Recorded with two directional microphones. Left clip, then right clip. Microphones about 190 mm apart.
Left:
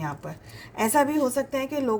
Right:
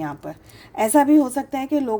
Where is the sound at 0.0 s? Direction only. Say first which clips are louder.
Right 4 dB; 40° right (ahead or behind).